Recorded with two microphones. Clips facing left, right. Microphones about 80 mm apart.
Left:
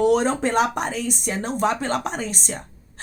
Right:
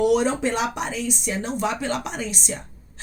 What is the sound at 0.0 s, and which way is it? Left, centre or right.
Speech, left.